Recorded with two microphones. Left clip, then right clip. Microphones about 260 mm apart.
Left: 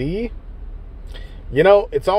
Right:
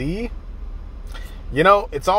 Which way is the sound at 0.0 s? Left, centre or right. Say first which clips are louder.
Left 3 dB; left.